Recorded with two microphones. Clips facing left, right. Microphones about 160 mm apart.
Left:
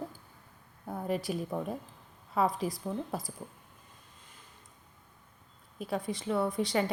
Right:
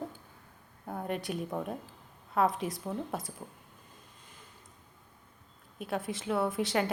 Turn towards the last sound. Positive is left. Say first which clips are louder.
# even
turn(degrees=0)  # may be behind; listen again after turning